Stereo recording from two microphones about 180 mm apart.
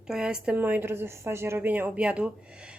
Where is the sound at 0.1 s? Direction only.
5° right (ahead or behind).